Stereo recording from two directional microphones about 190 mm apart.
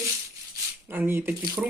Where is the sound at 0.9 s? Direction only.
10° right (ahead or behind).